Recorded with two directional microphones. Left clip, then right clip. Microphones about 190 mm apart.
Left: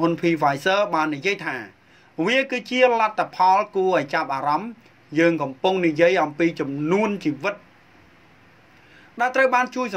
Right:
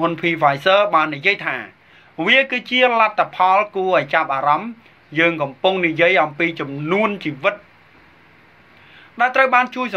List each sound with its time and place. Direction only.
0.0 s speech: 45° left (ahead or behind)
9.1 s speech: 45° left (ahead or behind)